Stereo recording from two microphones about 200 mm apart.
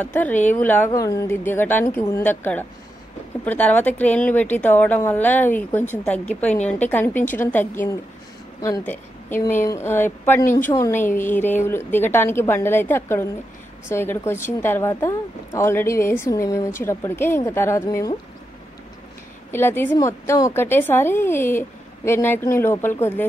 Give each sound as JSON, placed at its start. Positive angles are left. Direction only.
{"t": 0.0, "sound": "speech", "side_deg": 10}
{"t": 19.5, "sound": "speech", "side_deg": 10}